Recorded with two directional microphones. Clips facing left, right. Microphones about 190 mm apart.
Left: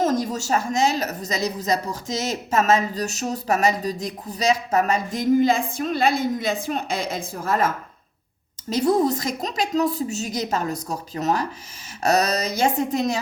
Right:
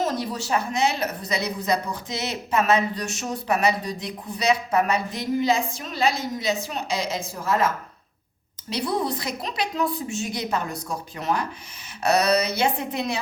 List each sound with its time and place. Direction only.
0.0 s a woman's voice: 45° left (ahead or behind)
8.7 s a woman's voice: 45° left (ahead or behind)